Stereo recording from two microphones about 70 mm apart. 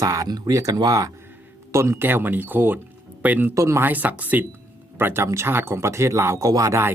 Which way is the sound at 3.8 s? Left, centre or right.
Right.